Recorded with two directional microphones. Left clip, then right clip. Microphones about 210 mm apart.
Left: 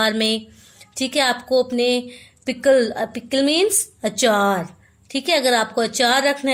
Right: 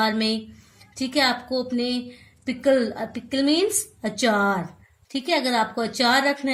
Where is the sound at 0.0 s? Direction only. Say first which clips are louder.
Left 4 dB; 40° left (ahead or behind).